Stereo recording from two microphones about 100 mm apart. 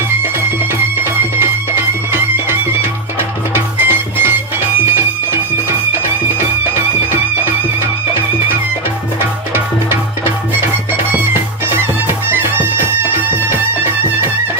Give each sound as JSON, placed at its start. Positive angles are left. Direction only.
{"t": 1.4, "sound": "music", "side_deg": -25}
{"t": 12.0, "sound": "music", "side_deg": -20}